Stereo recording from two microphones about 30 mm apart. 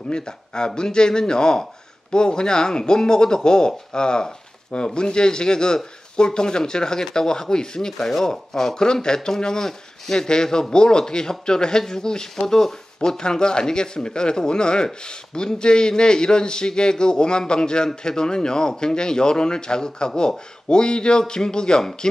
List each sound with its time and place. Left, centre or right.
0.1 s speech: left
13.2 s speech: left